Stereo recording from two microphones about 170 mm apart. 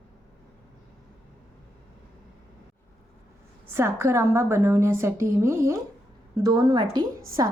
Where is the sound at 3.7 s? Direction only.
15° right (ahead or behind).